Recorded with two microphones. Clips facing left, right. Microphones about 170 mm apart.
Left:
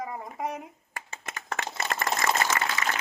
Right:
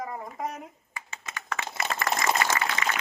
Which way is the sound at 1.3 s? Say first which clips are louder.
Left 1 dB; 55° left (ahead or behind).